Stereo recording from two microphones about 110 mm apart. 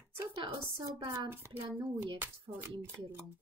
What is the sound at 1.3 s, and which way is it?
Speech, 20° right (ahead or behind).